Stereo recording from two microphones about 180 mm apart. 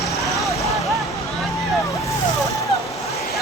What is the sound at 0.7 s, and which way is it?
Vehicle, centre (ahead or behind).